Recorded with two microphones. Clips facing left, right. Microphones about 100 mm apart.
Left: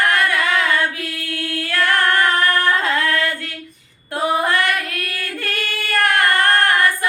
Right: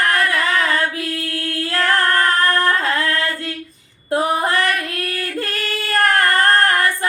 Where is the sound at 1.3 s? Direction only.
30° right (ahead or behind).